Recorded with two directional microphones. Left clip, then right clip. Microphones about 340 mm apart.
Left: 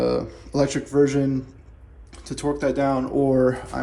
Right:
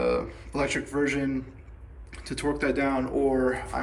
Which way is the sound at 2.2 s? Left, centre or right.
Centre.